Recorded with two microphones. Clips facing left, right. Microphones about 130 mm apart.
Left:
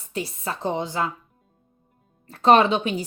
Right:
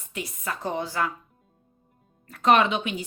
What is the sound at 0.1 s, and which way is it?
A woman's voice, 30° left (ahead or behind).